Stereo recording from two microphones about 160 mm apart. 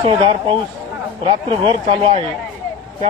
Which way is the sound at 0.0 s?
35° right (ahead or behind).